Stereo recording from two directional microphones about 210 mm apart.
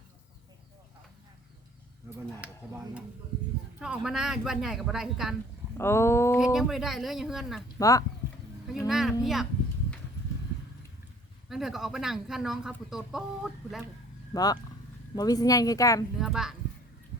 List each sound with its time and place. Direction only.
2.0 s speech: 10° right (ahead or behind)
3.8 s speech: 5° right (ahead or behind)
5.7 s a sound: 10° left (ahead or behind)
6.4 s speech: centre (ahead or behind)
7.8 s speech: 15° left (ahead or behind)
8.9 s speech: centre (ahead or behind)
11.4 s speech: centre (ahead or behind)
14.3 s speech: 20° left (ahead or behind)
16.1 s speech: centre (ahead or behind)